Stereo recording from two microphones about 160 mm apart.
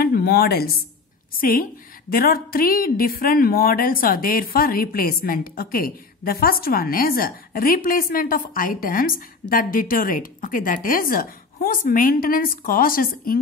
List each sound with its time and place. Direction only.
0.0 s a woman's voice: 70° left (ahead or behind)